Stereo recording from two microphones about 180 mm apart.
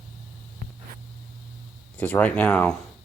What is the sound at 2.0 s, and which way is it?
Speech, 10° left (ahead or behind).